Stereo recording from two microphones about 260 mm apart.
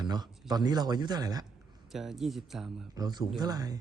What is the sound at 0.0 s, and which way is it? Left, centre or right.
Speech, centre.